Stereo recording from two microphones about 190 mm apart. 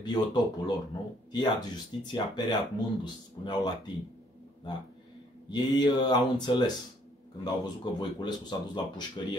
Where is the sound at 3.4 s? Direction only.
20° left (ahead or behind).